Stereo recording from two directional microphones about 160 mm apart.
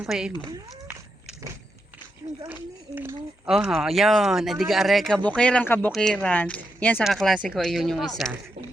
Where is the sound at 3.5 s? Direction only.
5° right (ahead or behind).